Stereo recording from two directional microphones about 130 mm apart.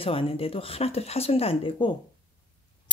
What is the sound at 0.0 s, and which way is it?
Speech, 45° left (ahead or behind).